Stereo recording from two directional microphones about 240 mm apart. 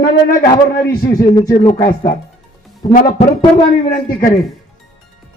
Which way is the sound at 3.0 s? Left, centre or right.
Left.